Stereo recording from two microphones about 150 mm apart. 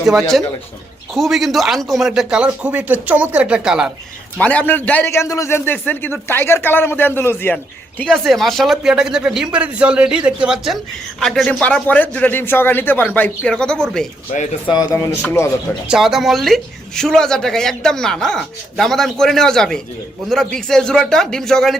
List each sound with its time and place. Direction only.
0.0 s speech: centre (ahead or behind)
4.4 s a man's voice: 10° left (ahead or behind)
14.3 s speech: 55° left (ahead or behind)
14.7 s speech: 25° left (ahead or behind)
15.2 s a man's voice: 15° left (ahead or behind)
15.9 s speech: centre (ahead or behind)